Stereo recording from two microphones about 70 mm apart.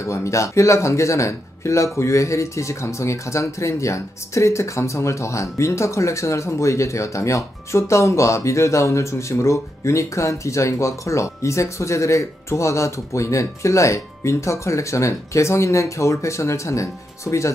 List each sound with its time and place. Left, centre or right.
0.0 s speech: left